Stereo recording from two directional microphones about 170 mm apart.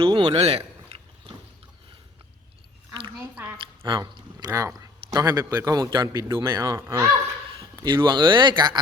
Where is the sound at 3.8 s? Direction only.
25° right (ahead or behind).